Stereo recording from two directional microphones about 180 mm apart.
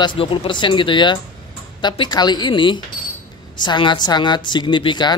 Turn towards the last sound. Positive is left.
turn(degrees=25)  # may be behind; listen again after turning